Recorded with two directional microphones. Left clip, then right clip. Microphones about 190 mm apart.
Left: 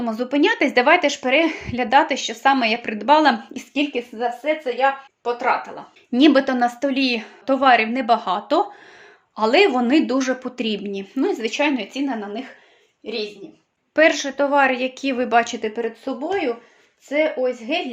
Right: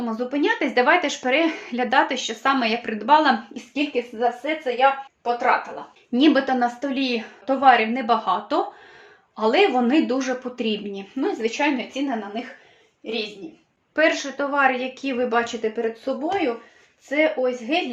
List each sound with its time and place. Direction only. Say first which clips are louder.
0.0 s speech: left 4 dB; 50° left (ahead or behind)
3.5 s a woman's voice: left 1 dB; 55° left (ahead or behind)
6.1 s a woman's voice: left 3 dB; 40° left (ahead or behind); by 12.4 s 55° left (ahead or behind)
13.9 s a woman's voice: left 4 dB; 35° left (ahead or behind)